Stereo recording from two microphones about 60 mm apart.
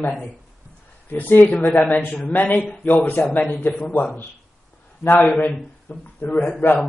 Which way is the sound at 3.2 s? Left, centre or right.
Centre.